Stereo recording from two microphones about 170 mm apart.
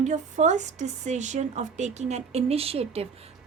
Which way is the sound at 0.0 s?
45° right (ahead or behind).